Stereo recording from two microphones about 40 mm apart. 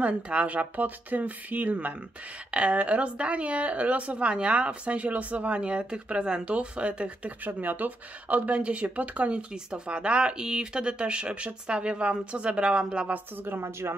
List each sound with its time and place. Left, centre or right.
0.0 s speech: right
2.5 s speech: right
5.6 s speech: right
7.4 s speech: right
9.5 s speech: right
13.5 s speech: right